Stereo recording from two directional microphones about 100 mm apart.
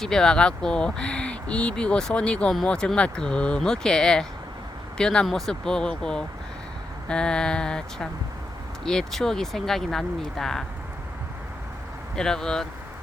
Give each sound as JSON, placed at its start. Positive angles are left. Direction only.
{"t": 0.0, "sound": "speech", "side_deg": 5}
{"t": 12.1, "sound": "speech", "side_deg": 5}